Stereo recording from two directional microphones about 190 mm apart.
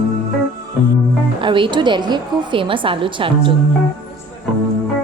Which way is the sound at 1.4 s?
25° right (ahead or behind).